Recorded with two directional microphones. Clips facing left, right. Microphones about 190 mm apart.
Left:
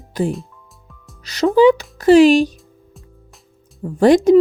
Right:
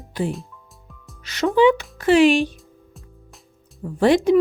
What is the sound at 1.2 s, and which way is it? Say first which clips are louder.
Speech: left 4 dB; 35° left (ahead or behind).